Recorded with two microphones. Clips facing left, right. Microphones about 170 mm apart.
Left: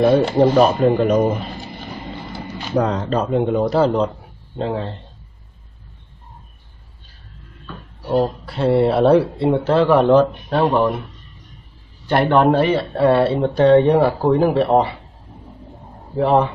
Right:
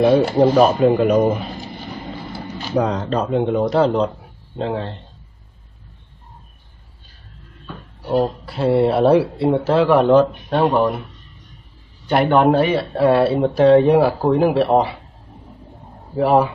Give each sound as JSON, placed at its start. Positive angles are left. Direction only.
{"t": 0.0, "sound": "speech", "side_deg": 0}
{"t": 8.2, "sound": "speech", "side_deg": 0}
{"t": 12.1, "sound": "speech", "side_deg": -5}
{"t": 16.2, "sound": "speech", "side_deg": -5}